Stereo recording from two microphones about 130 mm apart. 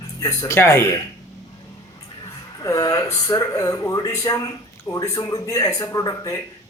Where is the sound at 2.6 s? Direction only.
30° left (ahead or behind).